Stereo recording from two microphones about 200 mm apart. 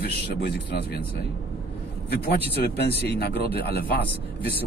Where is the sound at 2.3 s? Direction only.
55° left (ahead or behind).